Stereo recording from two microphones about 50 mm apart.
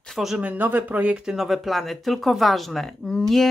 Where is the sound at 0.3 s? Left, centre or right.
Right.